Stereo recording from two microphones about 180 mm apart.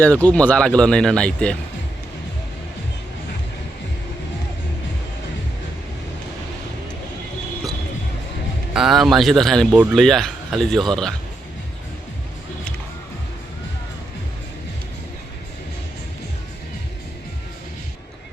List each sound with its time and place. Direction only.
0.0 s speech: 10° left (ahead or behind)
8.7 s speech: centre (ahead or behind)